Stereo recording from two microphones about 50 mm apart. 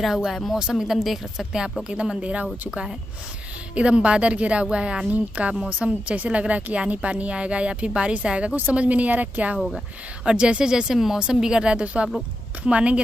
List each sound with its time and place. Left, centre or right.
0.0 s a woman's voice: centre
1.9 s speech: right
3.7 s speech: right
10.2 s a woman's voice: right